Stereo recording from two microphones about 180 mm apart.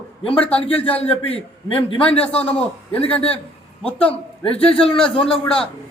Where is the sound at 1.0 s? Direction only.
35° left (ahead or behind).